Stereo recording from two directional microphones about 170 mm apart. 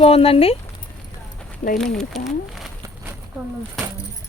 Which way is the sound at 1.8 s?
5° left (ahead or behind).